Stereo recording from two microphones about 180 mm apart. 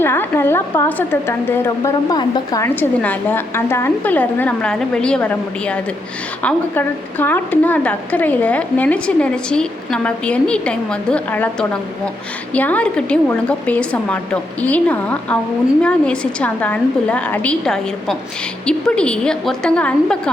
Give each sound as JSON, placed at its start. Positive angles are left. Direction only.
{"t": 0.0, "sound": "a woman's voice", "side_deg": 15}